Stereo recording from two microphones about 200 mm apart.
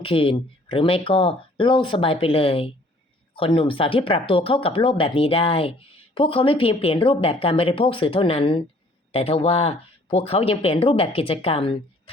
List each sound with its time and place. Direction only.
0.0 s speech: 25° left (ahead or behind)